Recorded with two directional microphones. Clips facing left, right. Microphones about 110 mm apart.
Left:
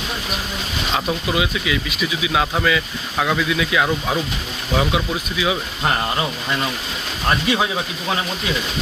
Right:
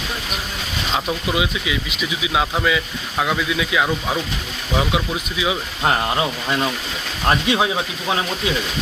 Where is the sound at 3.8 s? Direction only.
Centre (ahead or behind).